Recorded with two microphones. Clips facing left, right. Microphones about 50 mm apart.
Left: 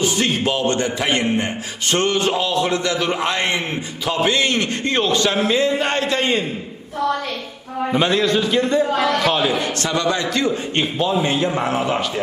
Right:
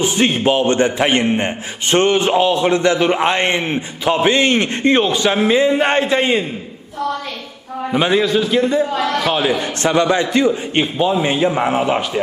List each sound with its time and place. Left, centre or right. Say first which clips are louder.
0.0 s a man's voice: right 4 dB; right
7.9 s a man's voice: right 3 dB; centre
9.6 s a man's voice: right 5 dB; right